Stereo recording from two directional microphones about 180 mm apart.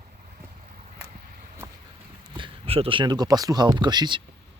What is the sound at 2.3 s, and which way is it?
Speech, 30° right (ahead or behind).